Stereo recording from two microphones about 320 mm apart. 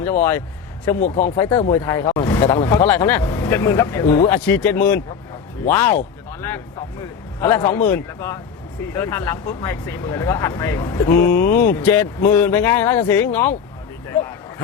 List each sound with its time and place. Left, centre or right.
0.0 s speech: centre
0.9 s speech: left
1.4 s speech: centre
7.4 s speech: centre